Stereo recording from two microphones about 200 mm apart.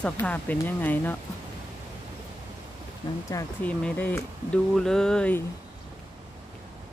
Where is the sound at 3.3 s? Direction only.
15° left (ahead or behind).